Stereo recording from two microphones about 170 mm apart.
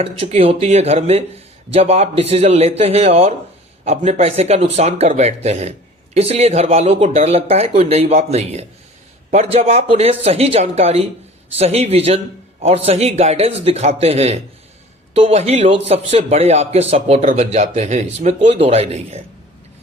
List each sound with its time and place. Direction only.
0.0 s a man's voice: 35° right (ahead or behind)